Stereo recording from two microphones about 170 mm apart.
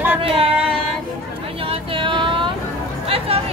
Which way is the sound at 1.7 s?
30° right (ahead or behind).